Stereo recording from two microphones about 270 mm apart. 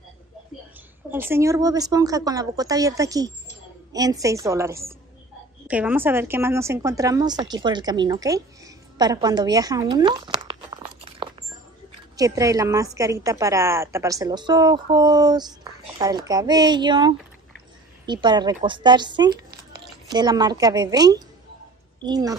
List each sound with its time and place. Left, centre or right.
1.1 s a woman's voice: centre